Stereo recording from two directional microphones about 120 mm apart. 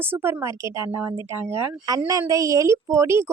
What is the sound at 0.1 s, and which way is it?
A woman's voice, 20° right (ahead or behind).